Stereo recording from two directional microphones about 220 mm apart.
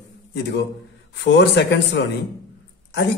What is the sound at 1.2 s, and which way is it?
Speech, 50° left (ahead or behind).